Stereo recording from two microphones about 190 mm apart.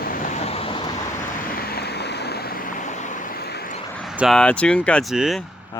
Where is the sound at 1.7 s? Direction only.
60° left (ahead or behind).